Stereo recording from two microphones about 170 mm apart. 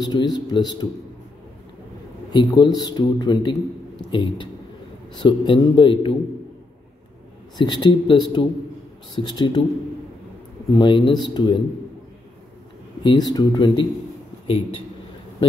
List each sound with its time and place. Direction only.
0.0 s a man's voice: 25° left (ahead or behind)
2.3 s a man's voice: 25° left (ahead or behind)
7.5 s a man's voice: 25° left (ahead or behind)
10.8 s a man's voice: 25° left (ahead or behind)
13.0 s a man's voice: 25° left (ahead or behind)